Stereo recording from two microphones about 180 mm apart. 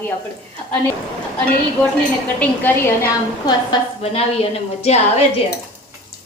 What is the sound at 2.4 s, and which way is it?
Speech, 10° left (ahead or behind).